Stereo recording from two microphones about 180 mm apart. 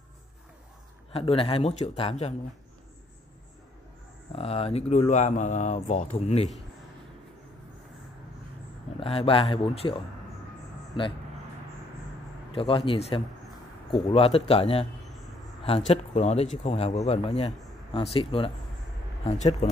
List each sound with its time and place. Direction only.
1.1 s speech: 30° left (ahead or behind)
4.4 s speech: 35° left (ahead or behind)
9.0 s speech: 30° left (ahead or behind)
12.5 s speech: 30° left (ahead or behind)
15.9 s speech: 35° left (ahead or behind)
19.6 s speech: 35° left (ahead or behind)